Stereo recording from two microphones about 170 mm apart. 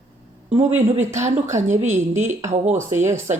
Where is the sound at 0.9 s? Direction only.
45° right (ahead or behind).